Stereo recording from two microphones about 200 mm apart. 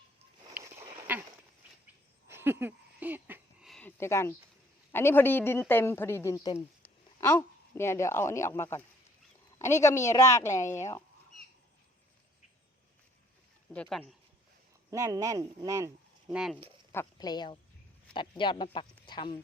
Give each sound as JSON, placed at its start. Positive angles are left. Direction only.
{"t": 0.5, "sound": "a sound", "side_deg": -10}
{"t": 2.2, "sound": "a sound", "side_deg": -10}
{"t": 3.7, "sound": "a woman's voice", "side_deg": 5}
{"t": 13.7, "sound": "speech", "side_deg": 0}
{"t": 14.8, "sound": "speech", "side_deg": -15}
{"t": 16.3, "sound": "speech", "side_deg": -5}
{"t": 16.9, "sound": "speech", "side_deg": 15}